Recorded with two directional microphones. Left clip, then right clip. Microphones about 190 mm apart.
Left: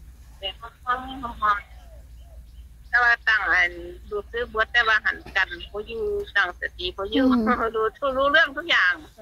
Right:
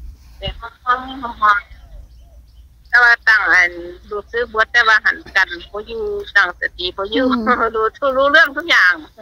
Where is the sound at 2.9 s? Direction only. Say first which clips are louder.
Right 8 dB; 50° right (ahead or behind).